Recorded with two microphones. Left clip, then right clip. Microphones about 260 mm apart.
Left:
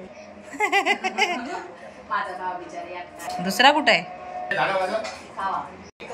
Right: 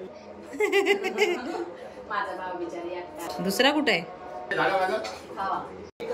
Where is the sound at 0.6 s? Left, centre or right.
Centre.